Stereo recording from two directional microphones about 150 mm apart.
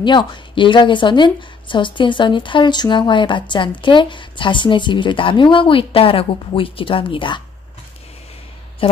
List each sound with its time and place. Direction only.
0.0 s a woman's voice: 30° left (ahead or behind)
8.8 s speech: 35° left (ahead or behind)